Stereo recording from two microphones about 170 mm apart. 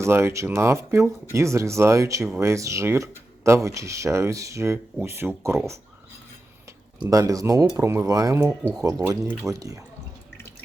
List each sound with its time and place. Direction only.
0.0 s speech: 15° right (ahead or behind)
7.1 s speech: 20° right (ahead or behind)